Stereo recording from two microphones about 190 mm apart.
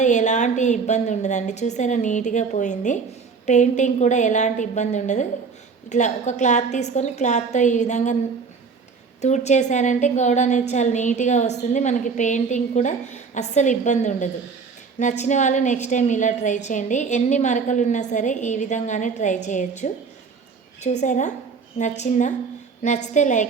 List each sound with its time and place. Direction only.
0.0 s a woman's voice: 40° left (ahead or behind)
9.2 s a woman's voice: 35° left (ahead or behind)